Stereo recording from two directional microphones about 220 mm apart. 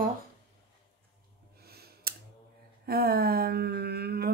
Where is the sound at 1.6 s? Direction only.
45° right (ahead or behind).